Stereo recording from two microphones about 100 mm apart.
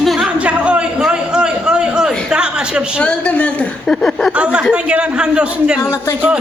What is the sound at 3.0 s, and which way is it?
A woman's voice, 10° left (ahead or behind).